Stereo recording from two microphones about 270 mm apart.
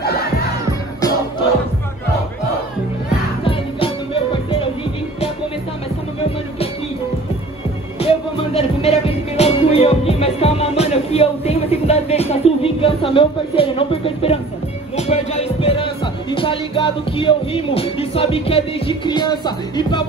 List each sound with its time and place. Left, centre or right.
0.0 s crowd: left
3.4 s music: centre
8.0 s music: left